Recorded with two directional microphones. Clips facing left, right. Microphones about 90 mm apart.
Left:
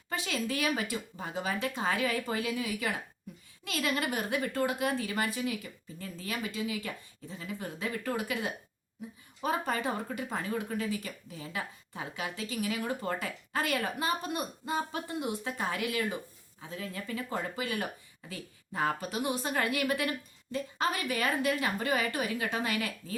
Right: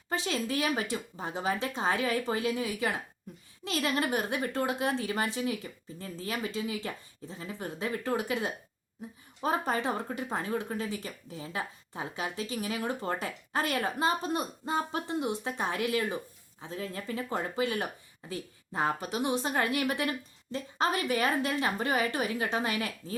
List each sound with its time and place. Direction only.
0.1 s speech: 25° right (ahead or behind)